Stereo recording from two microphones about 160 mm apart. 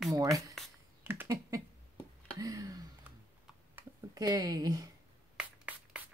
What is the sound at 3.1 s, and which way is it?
Typing, 10° right (ahead or behind).